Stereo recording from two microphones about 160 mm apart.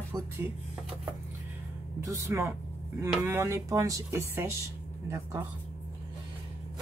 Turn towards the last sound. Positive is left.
turn(degrees=-20)  # may be behind; listen again after turning